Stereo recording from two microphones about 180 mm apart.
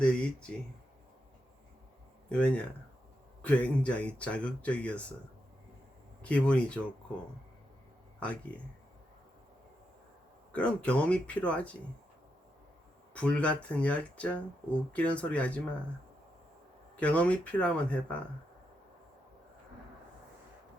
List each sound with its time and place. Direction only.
0.0 s speech: 5° left (ahead or behind)
2.3 s speech: 5° left (ahead or behind)
6.2 s speech: 5° left (ahead or behind)
8.2 s speech: 5° left (ahead or behind)
10.5 s speech: 5° left (ahead or behind)
13.1 s speech: 5° left (ahead or behind)
17.0 s speech: 5° left (ahead or behind)